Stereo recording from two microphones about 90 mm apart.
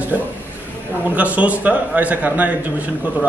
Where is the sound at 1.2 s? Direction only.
15° right (ahead or behind).